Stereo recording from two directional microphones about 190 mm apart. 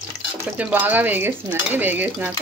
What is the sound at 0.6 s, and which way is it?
Stir, 10° right (ahead or behind).